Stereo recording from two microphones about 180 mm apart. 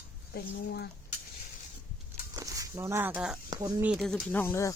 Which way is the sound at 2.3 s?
20° right (ahead or behind).